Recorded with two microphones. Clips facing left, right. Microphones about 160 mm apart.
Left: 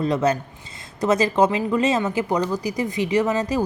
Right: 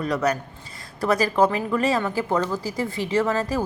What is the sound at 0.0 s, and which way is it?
A woman's voice, 25° left (ahead or behind).